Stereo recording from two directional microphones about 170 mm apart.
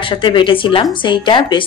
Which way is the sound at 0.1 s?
30° left (ahead or behind).